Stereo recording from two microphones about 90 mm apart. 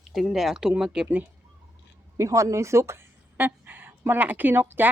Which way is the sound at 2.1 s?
35° right (ahead or behind).